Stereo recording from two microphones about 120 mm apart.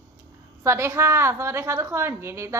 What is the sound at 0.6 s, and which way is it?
A woman's voice, 20° right (ahead or behind).